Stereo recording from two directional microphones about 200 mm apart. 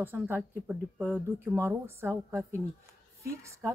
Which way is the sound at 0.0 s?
10° right (ahead or behind).